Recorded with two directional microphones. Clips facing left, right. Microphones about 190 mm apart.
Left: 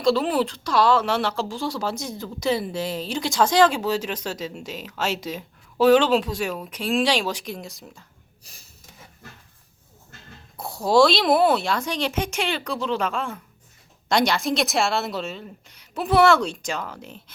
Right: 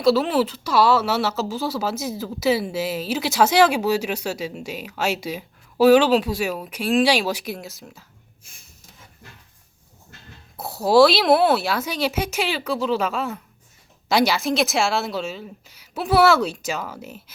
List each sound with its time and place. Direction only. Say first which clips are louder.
0.0 s speech: right 2 dB; 5° right (ahead or behind)
10.6 s a woman's voice: right 3 dB; 5° right (ahead or behind)